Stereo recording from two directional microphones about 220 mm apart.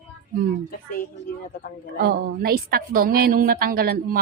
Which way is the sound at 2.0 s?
45° right (ahead or behind).